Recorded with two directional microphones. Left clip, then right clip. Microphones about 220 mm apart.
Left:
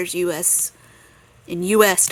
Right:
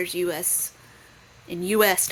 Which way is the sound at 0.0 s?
35° left (ahead or behind).